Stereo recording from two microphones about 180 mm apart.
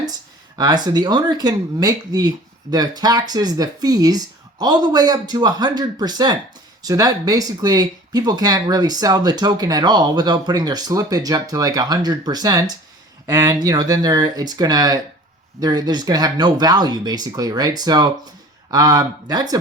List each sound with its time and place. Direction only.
0.5 s speech: 25° right (ahead or behind)